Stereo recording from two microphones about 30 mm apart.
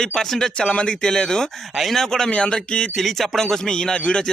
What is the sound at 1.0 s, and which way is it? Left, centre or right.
Speech, left.